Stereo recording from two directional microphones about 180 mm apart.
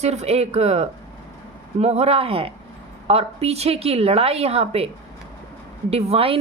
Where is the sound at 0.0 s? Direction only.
35° right (ahead or behind).